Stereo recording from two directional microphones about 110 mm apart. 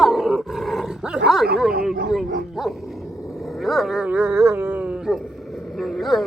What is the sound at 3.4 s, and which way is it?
Dog, centre (ahead or behind).